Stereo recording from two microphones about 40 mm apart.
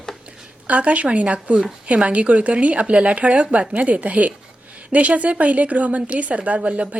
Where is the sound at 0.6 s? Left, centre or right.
Right.